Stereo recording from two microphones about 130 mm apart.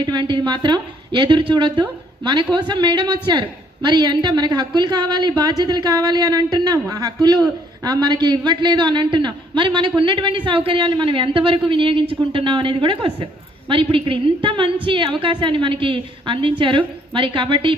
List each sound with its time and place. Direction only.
0.0 s a man's voice: 35° right (ahead or behind)